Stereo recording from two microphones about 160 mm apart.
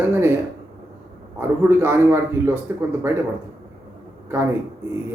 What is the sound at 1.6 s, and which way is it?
A man's voice, 15° right (ahead or behind).